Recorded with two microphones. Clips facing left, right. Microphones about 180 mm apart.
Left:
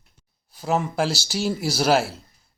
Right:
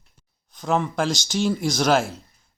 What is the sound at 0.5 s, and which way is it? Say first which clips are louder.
Speech: even; 5° left (ahead or behind).